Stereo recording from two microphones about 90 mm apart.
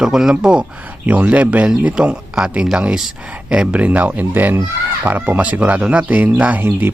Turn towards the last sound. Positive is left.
turn(degrees=-20)  # may be behind; listen again after turning